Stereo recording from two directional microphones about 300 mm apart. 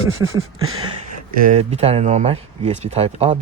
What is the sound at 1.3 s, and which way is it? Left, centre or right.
Speech, right.